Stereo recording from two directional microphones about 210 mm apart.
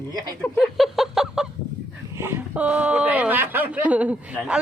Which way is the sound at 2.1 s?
10° right (ahead or behind).